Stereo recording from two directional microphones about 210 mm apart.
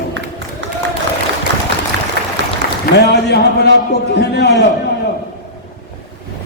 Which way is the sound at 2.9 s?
50° left (ahead or behind).